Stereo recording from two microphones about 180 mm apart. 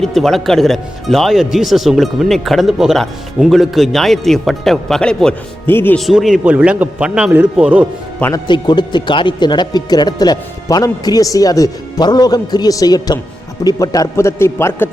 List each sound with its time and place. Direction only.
0.0 s speech: centre (ahead or behind)
6.0 s speech: centre (ahead or behind)
8.2 s a man's voice: 25° left (ahead or behind)